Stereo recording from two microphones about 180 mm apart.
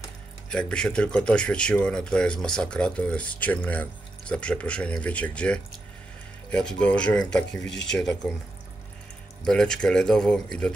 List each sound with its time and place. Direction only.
0.5 s speech: 5° left (ahead or behind)
7.6 s speech: 80° left
7.9 s speech: 5° left (ahead or behind)
9.4 s speech: 5° left (ahead or behind)